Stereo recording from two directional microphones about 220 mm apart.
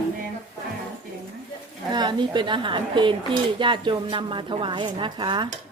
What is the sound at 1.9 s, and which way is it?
Speech, 20° right (ahead or behind).